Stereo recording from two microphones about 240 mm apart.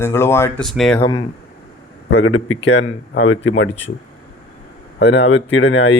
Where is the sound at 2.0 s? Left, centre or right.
Left.